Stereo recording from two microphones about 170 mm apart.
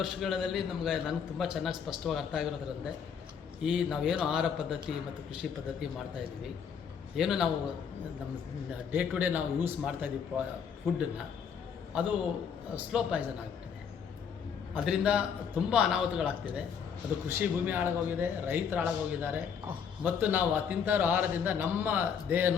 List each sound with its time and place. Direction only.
0.0 s a man's voice: centre (ahead or behind)
8.9 s speech: 10° right (ahead or behind)
11.9 s speech: 5° right (ahead or behind)
14.7 s speech: 5° right (ahead or behind)